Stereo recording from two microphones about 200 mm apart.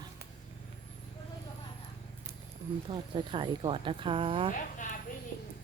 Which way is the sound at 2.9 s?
25° right (ahead or behind).